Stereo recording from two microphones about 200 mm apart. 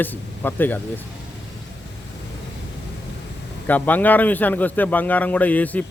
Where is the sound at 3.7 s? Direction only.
10° left (ahead or behind).